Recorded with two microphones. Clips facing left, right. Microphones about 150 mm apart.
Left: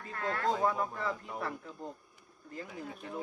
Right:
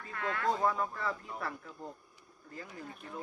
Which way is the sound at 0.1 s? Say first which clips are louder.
Left 1 dB; 35° left (ahead or behind).